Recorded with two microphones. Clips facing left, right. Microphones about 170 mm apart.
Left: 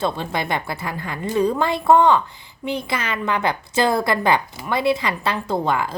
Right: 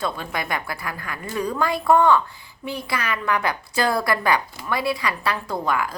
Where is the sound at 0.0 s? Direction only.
25° left (ahead or behind).